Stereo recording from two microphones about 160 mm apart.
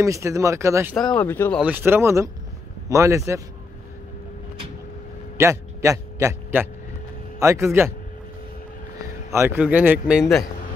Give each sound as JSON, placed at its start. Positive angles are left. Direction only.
{"t": 0.0, "sound": "speech", "side_deg": -20}
{"t": 1.2, "sound": "speech", "side_deg": 10}
{"t": 1.6, "sound": "speech", "side_deg": -10}
{"t": 5.4, "sound": "a man's voice", "side_deg": -20}
{"t": 9.3, "sound": "a man's voice", "side_deg": -15}